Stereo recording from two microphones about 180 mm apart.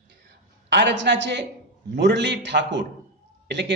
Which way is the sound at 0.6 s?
75° right (ahead or behind).